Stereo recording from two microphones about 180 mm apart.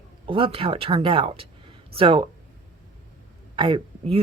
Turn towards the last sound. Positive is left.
turn(degrees=-30)  # may be behind; listen again after turning